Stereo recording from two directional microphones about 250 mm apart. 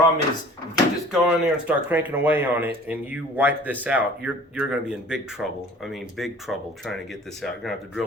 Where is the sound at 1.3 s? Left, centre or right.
Centre.